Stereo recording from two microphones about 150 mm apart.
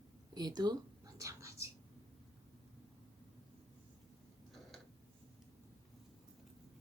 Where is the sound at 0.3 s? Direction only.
25° right (ahead or behind).